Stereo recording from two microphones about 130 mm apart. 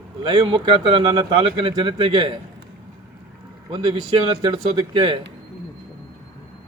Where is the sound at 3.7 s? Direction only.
40° right (ahead or behind).